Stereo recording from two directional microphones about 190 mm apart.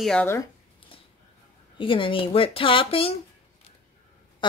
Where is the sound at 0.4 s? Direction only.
30° left (ahead or behind).